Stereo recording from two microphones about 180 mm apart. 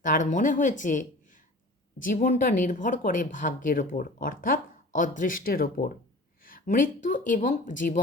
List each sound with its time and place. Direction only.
0.0 s speech: 45° left (ahead or behind)